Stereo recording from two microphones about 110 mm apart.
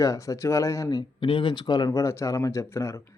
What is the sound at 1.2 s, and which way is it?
Speech, 50° left (ahead or behind).